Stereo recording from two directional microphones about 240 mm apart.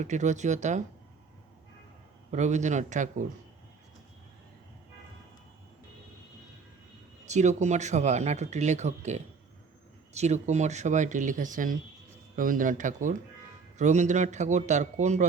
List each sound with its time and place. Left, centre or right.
0.0 s speech: right
2.3 s speech: right
7.3 s speech: right